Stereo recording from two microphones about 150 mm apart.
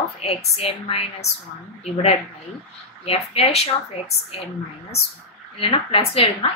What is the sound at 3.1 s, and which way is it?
Speech, 45° left (ahead or behind).